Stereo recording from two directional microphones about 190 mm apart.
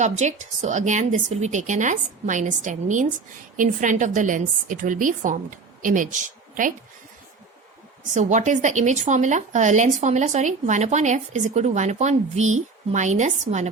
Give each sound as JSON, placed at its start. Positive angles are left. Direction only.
{"t": 0.0, "sound": "a woman's voice", "side_deg": -40}
{"t": 8.1, "sound": "speech", "side_deg": -40}